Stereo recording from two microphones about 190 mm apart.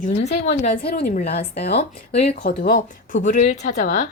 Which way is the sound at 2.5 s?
55° left (ahead or behind).